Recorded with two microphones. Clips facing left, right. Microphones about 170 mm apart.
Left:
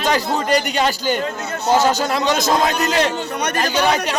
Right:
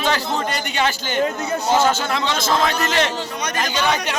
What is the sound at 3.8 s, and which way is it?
Speech, 35° left (ahead or behind).